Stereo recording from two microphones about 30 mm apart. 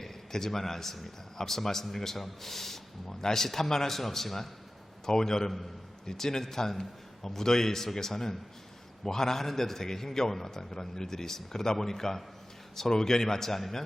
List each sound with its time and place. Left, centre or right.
0.0 s a man's voice: centre